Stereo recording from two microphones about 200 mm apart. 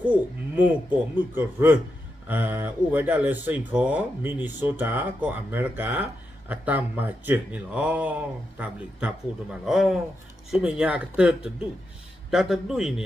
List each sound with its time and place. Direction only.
0.1 s a man's voice: 10° right (ahead or behind)